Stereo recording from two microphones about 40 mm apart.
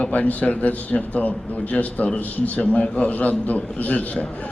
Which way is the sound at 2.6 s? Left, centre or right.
Left.